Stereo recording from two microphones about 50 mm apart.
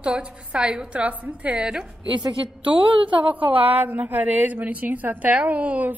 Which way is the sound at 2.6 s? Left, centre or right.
Right.